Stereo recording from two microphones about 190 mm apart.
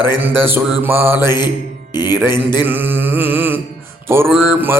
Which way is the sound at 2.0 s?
10° right (ahead or behind).